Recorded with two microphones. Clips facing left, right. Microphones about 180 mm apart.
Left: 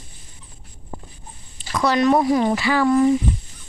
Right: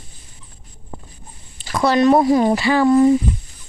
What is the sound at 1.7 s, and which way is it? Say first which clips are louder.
Speech: right 3 dB; 30° right (ahead or behind).